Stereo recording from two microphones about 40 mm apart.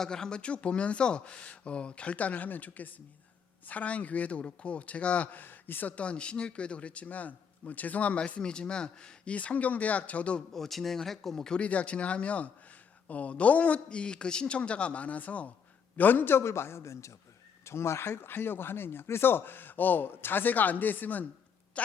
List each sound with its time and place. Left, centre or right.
0.0 s a man's voice: centre; by 5.4 s left
5.4 s speech: left
6.0 s a man's voice: left
10.5 s speech: centre
11.5 s a man's voice: left
16.0 s speech: left
17.7 s speech: left
21.7 s a sound: left